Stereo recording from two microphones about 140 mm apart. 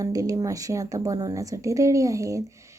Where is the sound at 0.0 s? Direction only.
25° right (ahead or behind).